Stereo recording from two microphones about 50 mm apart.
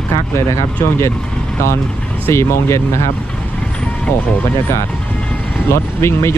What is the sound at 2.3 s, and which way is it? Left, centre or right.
Speech, left.